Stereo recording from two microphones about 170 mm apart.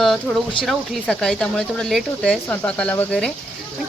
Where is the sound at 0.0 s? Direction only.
Centre (ahead or behind).